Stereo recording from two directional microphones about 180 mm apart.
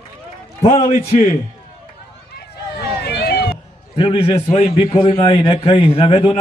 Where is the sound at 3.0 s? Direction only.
65° left (ahead or behind).